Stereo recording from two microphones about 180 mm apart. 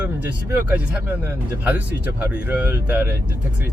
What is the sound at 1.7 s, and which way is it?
Speech, 10° right (ahead or behind).